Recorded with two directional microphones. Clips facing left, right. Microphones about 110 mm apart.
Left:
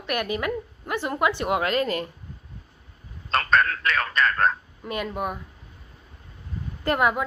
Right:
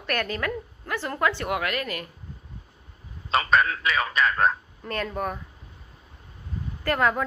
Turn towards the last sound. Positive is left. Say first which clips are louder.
# left 1 dB
turn(degrees=15)  # may be behind; listen again after turning